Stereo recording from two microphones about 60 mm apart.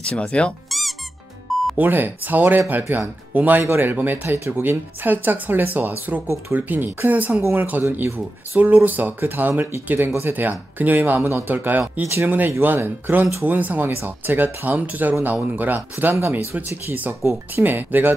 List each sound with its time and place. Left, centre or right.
0.0 s speech: centre
0.7 s music: centre
1.8 s speech: right
7.8 s speech: right
8.5 s speech: right
17.2 s speech: right
17.6 s speech: right